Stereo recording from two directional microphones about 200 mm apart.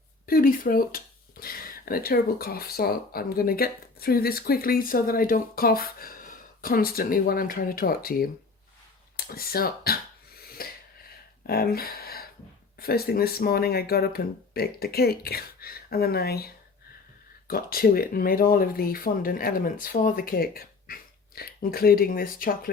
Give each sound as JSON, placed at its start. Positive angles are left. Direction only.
{"t": 0.3, "sound": "speech", "side_deg": 45}
{"t": 10.6, "sound": "a sound", "side_deg": 50}
{"t": 11.4, "sound": "speech", "side_deg": 50}
{"t": 17.5, "sound": "speech", "side_deg": 50}